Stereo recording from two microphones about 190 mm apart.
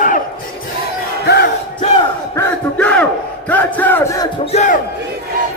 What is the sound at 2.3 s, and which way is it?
Battle cry, 10° left (ahead or behind).